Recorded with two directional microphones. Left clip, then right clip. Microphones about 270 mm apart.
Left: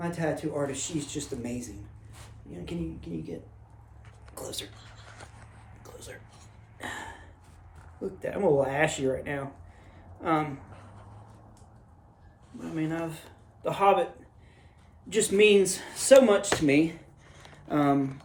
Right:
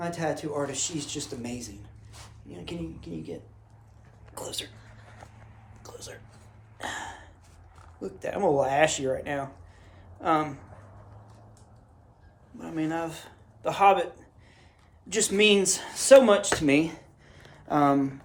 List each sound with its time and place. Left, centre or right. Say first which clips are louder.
0.0 s speech: right 1 dB; centre
4.4 s speech: right 2 dB; centre
5.8 s a sound: right 2 dB; centre
8.2 s speech: right 1 dB; centre
12.5 s a man's voice: right 2 dB; centre
15.1 s speech: left 1 dB; centre
17.4 s a sound: right 3 dB; centre